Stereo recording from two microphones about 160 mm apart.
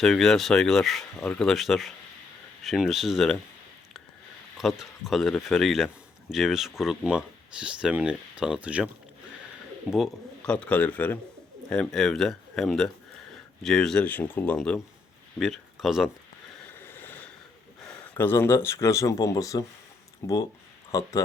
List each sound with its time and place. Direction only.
0.0 s speech: centre (ahead or behind)
4.5 s speech: centre (ahead or behind)
9.9 s speech: 5° left (ahead or behind)
16.8 s a sound: 15° left (ahead or behind)
18.1 s speech: 15° left (ahead or behind)